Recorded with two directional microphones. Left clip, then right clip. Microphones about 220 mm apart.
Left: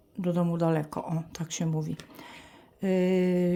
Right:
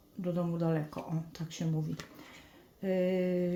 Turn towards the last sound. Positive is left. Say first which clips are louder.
# left 5 dB
turn(degrees=35)  # may be behind; listen again after turning